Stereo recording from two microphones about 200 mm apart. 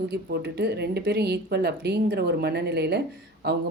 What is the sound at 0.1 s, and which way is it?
Speech, 55° right (ahead or behind).